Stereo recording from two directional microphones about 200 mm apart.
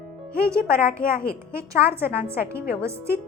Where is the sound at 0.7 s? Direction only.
45° left (ahead or behind).